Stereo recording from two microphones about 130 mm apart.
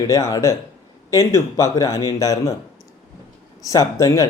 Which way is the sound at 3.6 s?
25° left (ahead or behind).